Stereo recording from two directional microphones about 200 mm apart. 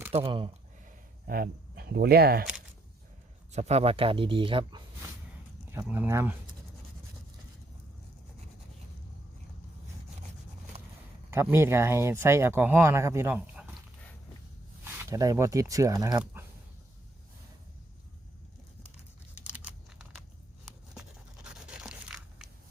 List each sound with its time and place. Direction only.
0.1 s speech: 25° right (ahead or behind)
1.3 s speech: 45° right (ahead or behind)
3.5 s speech: 35° right (ahead or behind)
5.7 s speech: 10° right (ahead or behind)
10.7 s a sound: 30° right (ahead or behind)
11.3 s speech: 10° right (ahead or behind)
14.8 s speech: 15° right (ahead or behind)
19.5 s computer keyboard: 5° right (ahead or behind)
20.9 s a sound: 5° right (ahead or behind)